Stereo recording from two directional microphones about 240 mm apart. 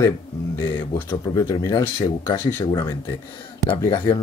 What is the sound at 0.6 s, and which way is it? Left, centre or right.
Speech, centre.